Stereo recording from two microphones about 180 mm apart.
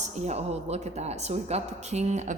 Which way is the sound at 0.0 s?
40° right (ahead or behind).